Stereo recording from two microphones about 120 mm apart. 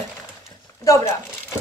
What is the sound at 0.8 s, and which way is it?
Speech, 25° left (ahead or behind).